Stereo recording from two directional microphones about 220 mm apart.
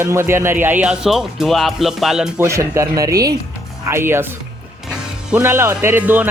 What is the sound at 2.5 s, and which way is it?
Speech, 15° right (ahead or behind).